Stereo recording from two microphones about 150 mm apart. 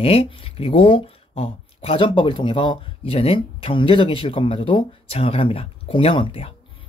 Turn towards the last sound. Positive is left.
turn(degrees=40)  # may be behind; listen again after turning